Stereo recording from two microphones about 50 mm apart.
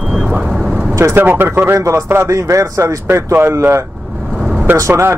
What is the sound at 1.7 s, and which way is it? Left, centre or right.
A man's voice, right.